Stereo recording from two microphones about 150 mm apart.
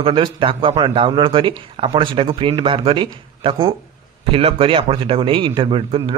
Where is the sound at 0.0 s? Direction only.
35° right (ahead or behind).